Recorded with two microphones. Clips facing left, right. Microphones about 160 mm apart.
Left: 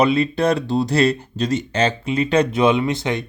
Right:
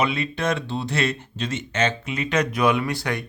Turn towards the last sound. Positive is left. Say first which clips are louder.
# left 5 dB
turn(degrees=20)  # may be behind; listen again after turning